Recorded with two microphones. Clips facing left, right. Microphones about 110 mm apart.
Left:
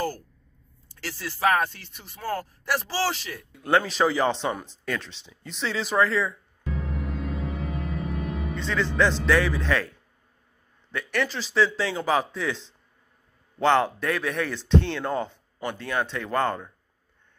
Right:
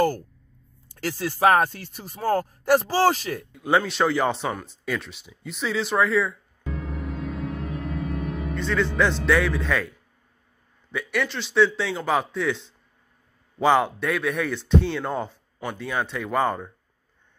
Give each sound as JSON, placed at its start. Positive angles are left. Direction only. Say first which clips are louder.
{"t": 0.8, "sound": "speech", "louder": "right 7 dB", "side_deg": -50}
{"t": 3.6, "sound": "a man's voice", "louder": "even", "side_deg": -5}
{"t": 4.8, "sound": "a sound", "louder": "right 2 dB", "side_deg": -5}
{"t": 10.9, "sound": "a man's voice", "louder": "right 1 dB", "side_deg": 0}